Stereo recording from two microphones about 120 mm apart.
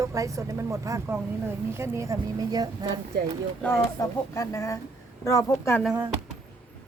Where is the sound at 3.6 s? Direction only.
25° left (ahead or behind).